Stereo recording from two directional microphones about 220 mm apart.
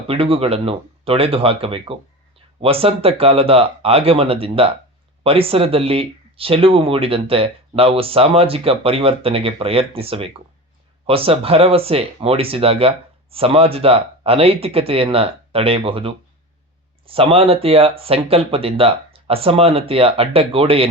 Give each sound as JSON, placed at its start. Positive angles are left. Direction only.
{"t": 0.1, "sound": "speech", "side_deg": -25}